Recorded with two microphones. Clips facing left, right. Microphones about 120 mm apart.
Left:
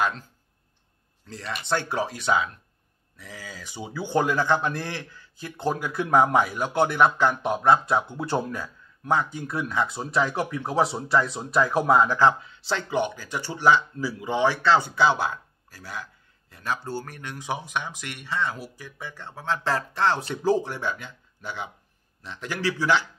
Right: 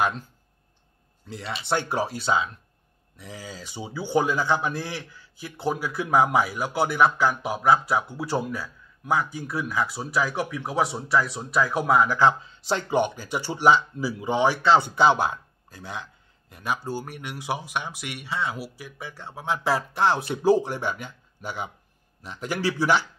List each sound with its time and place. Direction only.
1.2 s speech: 10° right (ahead or behind)
2.2 s speech: 25° right (ahead or behind); by 12.0 s centre (ahead or behind)
12.7 s speech: 15° right (ahead or behind)